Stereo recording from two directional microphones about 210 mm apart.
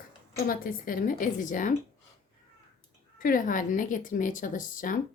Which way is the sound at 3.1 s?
40° left (ahead or behind).